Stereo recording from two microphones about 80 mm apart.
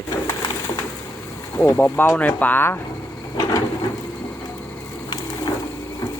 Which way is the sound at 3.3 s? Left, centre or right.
Left.